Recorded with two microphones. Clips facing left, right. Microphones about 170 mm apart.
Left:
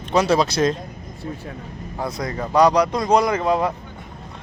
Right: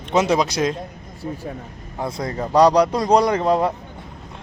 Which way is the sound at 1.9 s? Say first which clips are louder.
Right 1 dB; 25° right (ahead or behind).